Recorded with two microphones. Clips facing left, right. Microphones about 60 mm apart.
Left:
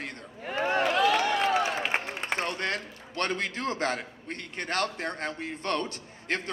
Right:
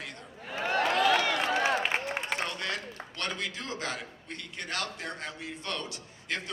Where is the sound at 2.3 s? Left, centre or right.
Left.